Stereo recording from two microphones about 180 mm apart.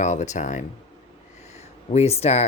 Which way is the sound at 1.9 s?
35° left (ahead or behind).